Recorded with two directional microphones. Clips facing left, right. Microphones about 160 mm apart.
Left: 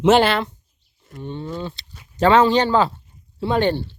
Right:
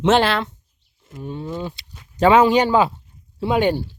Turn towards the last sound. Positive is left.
turn(degrees=-10)  # may be behind; listen again after turning